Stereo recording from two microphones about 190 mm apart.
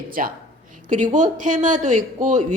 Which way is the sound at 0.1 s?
50° right (ahead or behind).